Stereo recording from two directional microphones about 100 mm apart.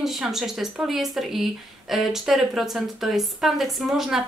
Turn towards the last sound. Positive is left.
turn(degrees=-5)  # may be behind; listen again after turning